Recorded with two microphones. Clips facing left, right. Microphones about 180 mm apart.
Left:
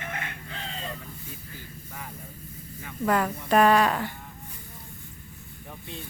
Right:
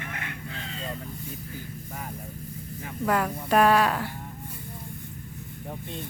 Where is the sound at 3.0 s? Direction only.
5° right (ahead or behind).